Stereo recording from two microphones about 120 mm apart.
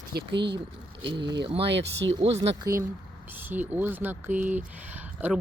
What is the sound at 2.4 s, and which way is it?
Speech, 30° right (ahead or behind).